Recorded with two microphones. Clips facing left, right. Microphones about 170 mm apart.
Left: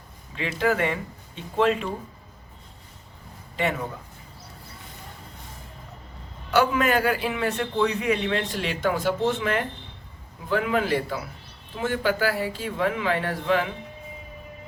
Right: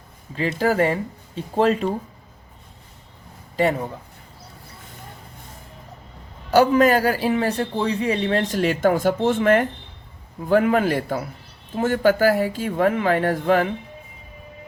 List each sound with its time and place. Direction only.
0.3 s a man's voice: 40° right (ahead or behind)
6.5 s a man's voice: 40° right (ahead or behind)